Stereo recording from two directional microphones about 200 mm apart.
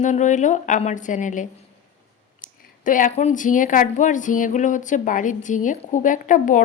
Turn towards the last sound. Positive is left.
turn(degrees=40)  # may be behind; listen again after turning